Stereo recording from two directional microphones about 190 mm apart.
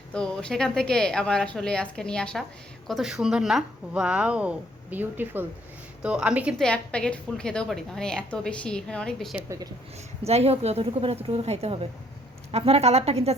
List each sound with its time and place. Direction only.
0.1 s a woman's voice: 5° left (ahead or behind)
6.7 s a woman's voice: 5° left (ahead or behind)
10.2 s a woman's voice: 35° right (ahead or behind)